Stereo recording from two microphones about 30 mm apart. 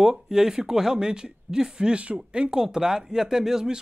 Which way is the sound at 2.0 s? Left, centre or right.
Right.